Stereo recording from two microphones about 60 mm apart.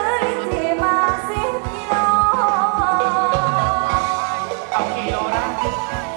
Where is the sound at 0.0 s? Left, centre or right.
Centre.